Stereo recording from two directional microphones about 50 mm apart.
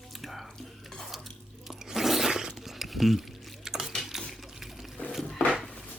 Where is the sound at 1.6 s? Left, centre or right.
Centre.